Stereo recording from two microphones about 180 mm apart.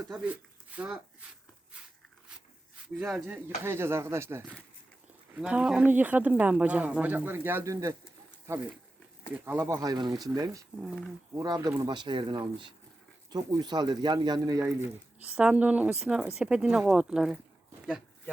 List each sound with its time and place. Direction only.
0.7 s speech: 10° right (ahead or behind)
3.0 s speech: 5° right (ahead or behind)
15.4 s speech: 5° right (ahead or behind)